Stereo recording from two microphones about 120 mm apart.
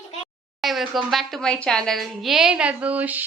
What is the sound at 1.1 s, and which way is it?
A woman's voice, centre (ahead or behind).